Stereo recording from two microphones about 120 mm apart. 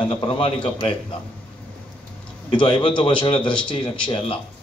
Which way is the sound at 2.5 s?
45° left (ahead or behind).